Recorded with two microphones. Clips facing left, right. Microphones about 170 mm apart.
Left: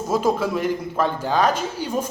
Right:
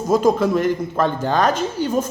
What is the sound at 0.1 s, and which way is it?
Speech, 5° left (ahead or behind).